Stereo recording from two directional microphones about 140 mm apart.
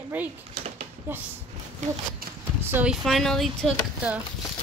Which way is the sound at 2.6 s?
15° right (ahead or behind).